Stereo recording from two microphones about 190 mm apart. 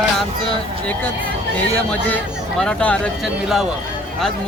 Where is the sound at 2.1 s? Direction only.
5° left (ahead or behind).